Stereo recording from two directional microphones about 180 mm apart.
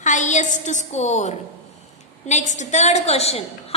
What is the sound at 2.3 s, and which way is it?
A woman's voice, 40° left (ahead or behind).